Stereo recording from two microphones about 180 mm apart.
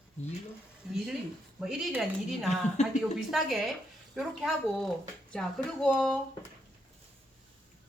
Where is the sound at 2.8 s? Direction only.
40° left (ahead or behind).